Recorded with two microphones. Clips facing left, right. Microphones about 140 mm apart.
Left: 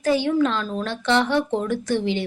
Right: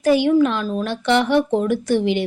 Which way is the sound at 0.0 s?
15° right (ahead or behind).